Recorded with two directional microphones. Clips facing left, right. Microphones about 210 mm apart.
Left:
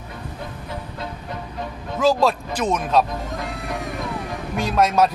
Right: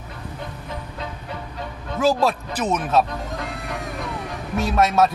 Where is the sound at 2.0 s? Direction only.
5° right (ahead or behind).